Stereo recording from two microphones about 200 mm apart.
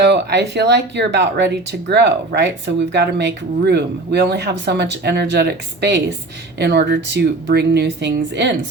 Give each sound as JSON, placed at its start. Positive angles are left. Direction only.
{"t": 0.0, "sound": "speech", "side_deg": -55}